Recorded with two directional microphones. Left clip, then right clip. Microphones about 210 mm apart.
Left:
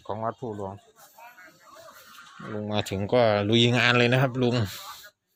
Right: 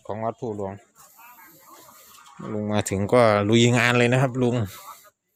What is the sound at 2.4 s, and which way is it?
Speech, 20° right (ahead or behind).